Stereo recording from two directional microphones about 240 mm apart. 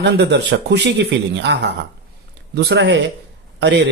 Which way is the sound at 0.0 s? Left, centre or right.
Right.